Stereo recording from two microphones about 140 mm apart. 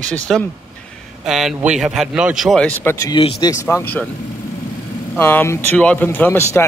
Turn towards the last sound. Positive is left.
turn(degrees=15)  # may be behind; listen again after turning